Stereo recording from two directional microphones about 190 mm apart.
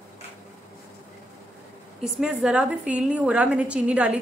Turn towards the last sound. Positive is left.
turn(degrees=-5)  # may be behind; listen again after turning